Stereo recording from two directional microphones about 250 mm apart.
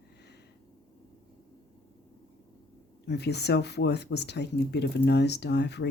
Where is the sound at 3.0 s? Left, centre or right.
Left.